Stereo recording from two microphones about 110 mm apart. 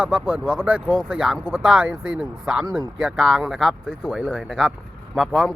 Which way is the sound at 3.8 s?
15° left (ahead or behind).